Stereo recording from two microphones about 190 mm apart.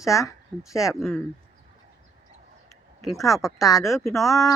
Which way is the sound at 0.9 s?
Centre (ahead or behind).